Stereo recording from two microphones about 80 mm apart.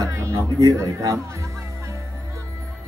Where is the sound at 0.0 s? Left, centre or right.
Right.